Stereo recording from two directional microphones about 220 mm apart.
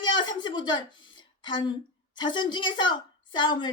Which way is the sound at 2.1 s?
20° left (ahead or behind).